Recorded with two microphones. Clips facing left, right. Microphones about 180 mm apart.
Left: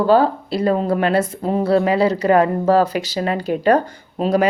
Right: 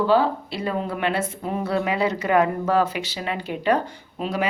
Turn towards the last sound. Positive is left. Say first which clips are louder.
# left 9 dB
turn(degrees=40)  # may be behind; listen again after turning